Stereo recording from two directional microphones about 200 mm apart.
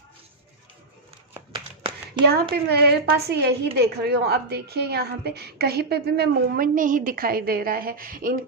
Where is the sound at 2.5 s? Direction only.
55° right (ahead or behind).